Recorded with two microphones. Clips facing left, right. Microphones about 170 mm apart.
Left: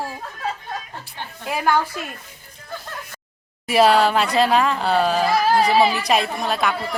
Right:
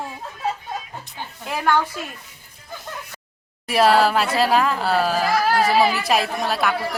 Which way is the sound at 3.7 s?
Centre (ahead or behind).